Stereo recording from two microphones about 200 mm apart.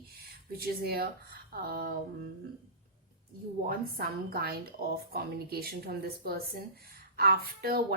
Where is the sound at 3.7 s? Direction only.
45° right (ahead or behind).